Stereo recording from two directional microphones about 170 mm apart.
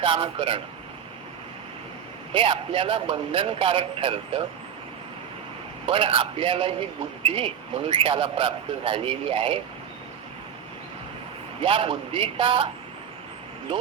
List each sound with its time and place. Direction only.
0.0 s speech: 30° right (ahead or behind)
2.3 s speech: 30° right (ahead or behind)
5.8 s speech: 30° right (ahead or behind)
11.6 s speech: 30° right (ahead or behind)